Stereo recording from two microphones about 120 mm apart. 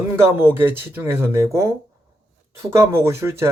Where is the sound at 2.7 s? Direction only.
25° right (ahead or behind).